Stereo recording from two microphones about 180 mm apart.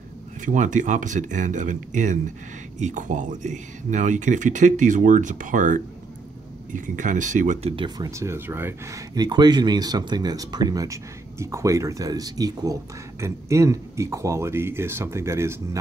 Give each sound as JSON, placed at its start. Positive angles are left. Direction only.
{"t": 0.4, "sound": "speech", "side_deg": -45}
{"t": 7.7, "sound": "speech", "side_deg": -25}
{"t": 8.1, "sound": "speech", "side_deg": -15}